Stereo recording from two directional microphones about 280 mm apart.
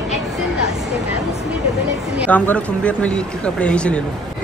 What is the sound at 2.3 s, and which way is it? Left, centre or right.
Speech, centre.